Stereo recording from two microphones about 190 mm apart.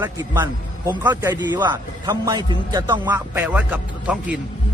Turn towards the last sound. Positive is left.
turn(degrees=-5)  # may be behind; listen again after turning